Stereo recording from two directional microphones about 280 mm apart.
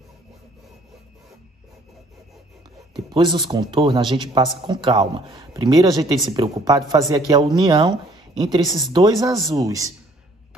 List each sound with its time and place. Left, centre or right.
2.9 s a man's voice: centre
8.6 s speech: centre
8.9 s a man's voice: centre